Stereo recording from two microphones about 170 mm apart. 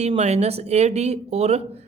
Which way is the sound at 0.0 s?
40° right (ahead or behind).